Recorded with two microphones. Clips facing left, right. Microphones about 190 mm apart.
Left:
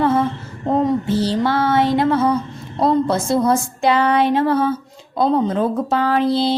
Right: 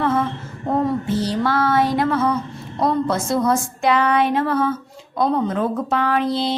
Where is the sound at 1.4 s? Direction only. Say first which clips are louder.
Even; 25° left (ahead or behind).